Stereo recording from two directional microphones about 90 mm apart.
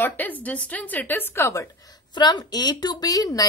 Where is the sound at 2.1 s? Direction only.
55° left (ahead or behind).